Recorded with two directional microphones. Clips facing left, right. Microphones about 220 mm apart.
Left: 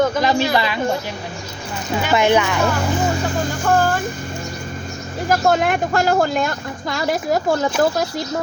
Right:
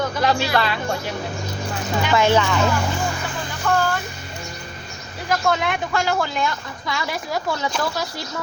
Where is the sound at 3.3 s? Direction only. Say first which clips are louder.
Left 2 dB; 45° left (ahead or behind).